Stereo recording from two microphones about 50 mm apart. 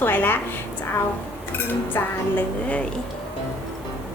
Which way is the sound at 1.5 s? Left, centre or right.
Left.